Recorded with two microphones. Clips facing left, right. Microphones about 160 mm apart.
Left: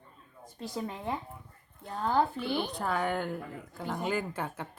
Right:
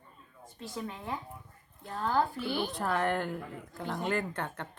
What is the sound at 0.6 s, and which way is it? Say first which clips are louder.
Speech: left 3 dB; 35° left (ahead or behind).